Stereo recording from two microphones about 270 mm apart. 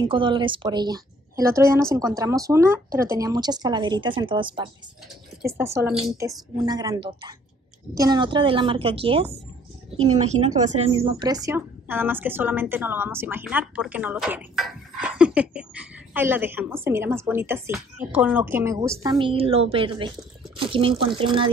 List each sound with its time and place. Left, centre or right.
0.0 s a woman's voice: centre